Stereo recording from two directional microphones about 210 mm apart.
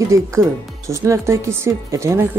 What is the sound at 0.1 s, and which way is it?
Speech, 15° right (ahead or behind).